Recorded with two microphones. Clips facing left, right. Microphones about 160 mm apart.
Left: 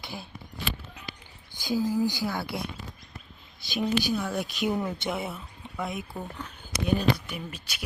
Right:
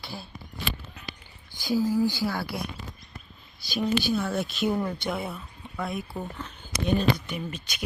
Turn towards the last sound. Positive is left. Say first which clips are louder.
# right 4 dB
turn(degrees=5)  # may be behind; listen again after turning